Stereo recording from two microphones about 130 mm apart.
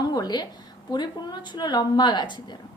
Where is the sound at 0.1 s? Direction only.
30° left (ahead or behind).